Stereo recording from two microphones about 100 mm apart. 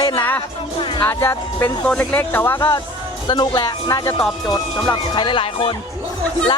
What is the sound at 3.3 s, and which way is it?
Speech, 45° left (ahead or behind).